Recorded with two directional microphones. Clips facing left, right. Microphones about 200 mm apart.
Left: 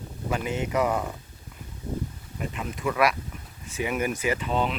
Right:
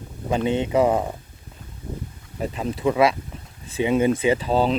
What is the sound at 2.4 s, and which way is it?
Speech, 35° right (ahead or behind).